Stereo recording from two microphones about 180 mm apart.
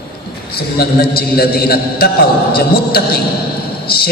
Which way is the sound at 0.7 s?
60° left (ahead or behind).